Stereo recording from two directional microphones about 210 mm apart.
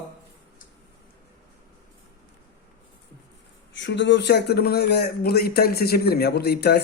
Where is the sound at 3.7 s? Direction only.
60° left (ahead or behind).